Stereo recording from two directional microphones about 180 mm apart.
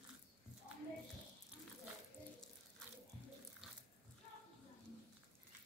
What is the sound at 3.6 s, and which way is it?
Biting, centre (ahead or behind).